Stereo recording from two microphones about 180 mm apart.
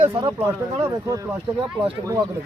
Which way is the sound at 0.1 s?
20° right (ahead or behind).